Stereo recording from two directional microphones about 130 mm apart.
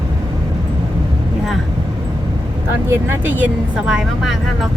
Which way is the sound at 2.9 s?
15° right (ahead or behind).